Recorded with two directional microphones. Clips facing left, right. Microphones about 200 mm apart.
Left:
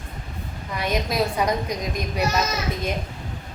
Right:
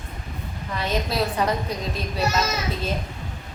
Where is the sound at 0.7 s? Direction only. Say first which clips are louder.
Left 1 dB; 15° left (ahead or behind).